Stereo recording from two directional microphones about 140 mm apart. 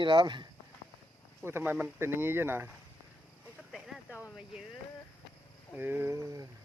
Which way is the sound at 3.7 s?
Centre (ahead or behind).